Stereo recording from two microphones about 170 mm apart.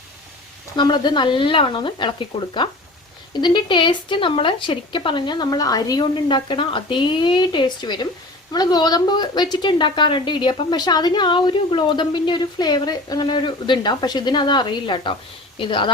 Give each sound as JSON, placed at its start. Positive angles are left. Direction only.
{"t": 0.8, "sound": "a woman's voice", "side_deg": 25}